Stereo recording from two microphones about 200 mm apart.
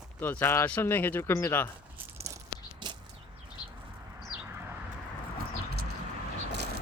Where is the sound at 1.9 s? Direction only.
15° right (ahead or behind).